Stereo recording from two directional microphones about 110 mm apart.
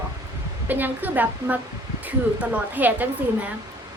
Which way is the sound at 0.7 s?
15° right (ahead or behind).